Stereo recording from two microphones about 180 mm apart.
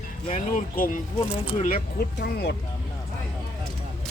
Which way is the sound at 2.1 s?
65° left (ahead or behind).